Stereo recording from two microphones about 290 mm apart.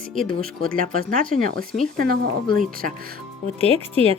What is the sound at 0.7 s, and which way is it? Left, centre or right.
A woman's voice, right.